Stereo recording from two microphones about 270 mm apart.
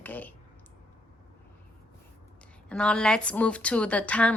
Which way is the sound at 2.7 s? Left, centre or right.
Centre.